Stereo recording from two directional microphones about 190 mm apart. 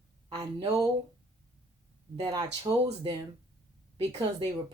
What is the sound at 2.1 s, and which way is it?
Speech, 20° right (ahead or behind).